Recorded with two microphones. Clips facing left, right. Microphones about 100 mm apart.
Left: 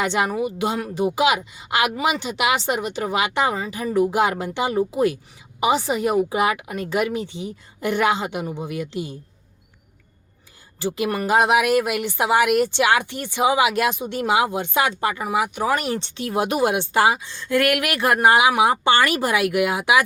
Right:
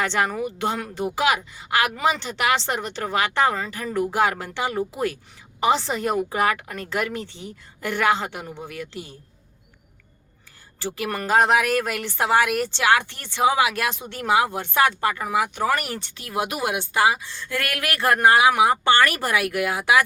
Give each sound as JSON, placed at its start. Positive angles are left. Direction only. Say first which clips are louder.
{"t": 0.0, "sound": "speech", "louder": "left 2 dB", "side_deg": 15}
{"t": 10.8, "sound": "speech", "louder": "left 4 dB", "side_deg": 15}